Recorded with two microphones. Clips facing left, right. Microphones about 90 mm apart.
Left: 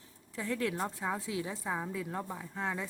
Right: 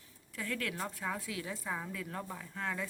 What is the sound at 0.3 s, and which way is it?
Speech, 25° left (ahead or behind).